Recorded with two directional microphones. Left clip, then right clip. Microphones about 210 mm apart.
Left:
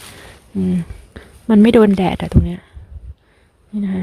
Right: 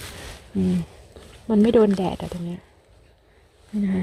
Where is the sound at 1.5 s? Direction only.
30° left (ahead or behind).